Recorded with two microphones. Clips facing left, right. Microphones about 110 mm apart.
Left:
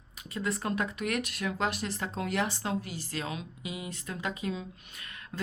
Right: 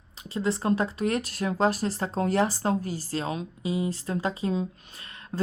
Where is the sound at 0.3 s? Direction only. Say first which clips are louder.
Right 6 dB; 30° right (ahead or behind).